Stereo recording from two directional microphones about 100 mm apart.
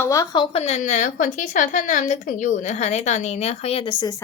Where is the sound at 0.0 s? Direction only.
35° left (ahead or behind).